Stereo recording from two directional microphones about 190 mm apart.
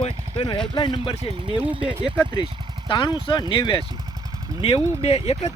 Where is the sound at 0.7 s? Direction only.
25° left (ahead or behind).